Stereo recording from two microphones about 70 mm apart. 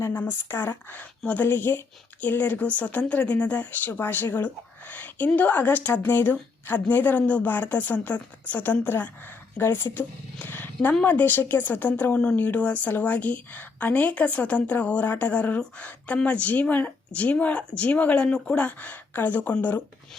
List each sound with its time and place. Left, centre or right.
0.2 s a woman's voice: left
10.4 s roaring cats: left
11.0 s a woman's voice: left